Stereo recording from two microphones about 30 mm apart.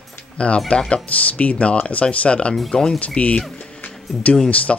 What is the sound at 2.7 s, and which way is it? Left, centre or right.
Speech, left.